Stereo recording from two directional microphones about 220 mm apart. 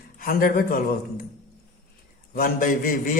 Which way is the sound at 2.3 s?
40° left (ahead or behind).